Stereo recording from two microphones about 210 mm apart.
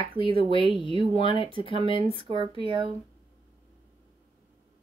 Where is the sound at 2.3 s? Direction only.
25° right (ahead or behind).